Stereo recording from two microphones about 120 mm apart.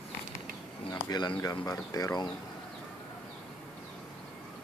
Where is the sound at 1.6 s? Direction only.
30° left (ahead or behind).